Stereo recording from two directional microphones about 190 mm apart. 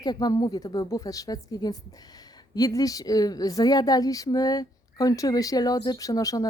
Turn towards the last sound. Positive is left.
turn(degrees=20)  # may be behind; listen again after turning